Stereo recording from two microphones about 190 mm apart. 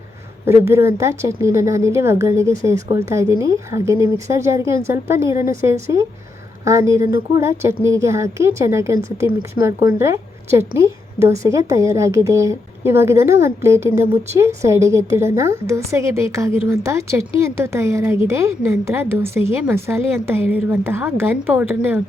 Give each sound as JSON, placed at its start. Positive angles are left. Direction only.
{"t": 0.4, "sound": "a woman's voice", "side_deg": -15}
{"t": 6.7, "sound": "a woman's voice", "side_deg": -15}